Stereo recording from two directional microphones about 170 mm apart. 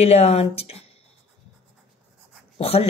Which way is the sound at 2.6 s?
35° left (ahead or behind).